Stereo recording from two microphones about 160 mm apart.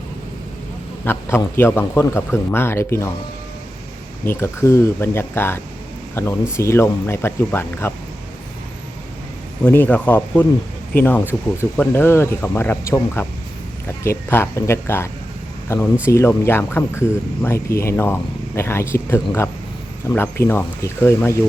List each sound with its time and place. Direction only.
1.0 s speech: 15° left (ahead or behind)
4.3 s speech: 15° left (ahead or behind)
9.6 s speech: 10° left (ahead or behind)